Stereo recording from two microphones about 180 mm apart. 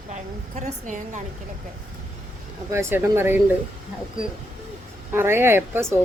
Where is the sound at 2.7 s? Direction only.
15° right (ahead or behind).